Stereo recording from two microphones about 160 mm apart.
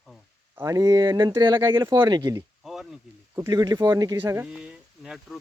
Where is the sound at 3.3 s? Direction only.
20° right (ahead or behind).